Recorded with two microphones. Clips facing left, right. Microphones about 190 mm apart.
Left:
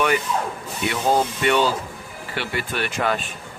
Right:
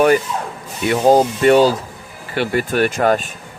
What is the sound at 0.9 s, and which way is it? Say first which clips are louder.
Speech: right 8 dB; 40° right (ahead or behind).